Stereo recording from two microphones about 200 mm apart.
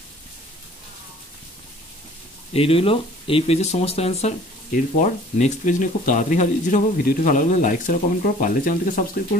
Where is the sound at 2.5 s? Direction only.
30° left (ahead or behind).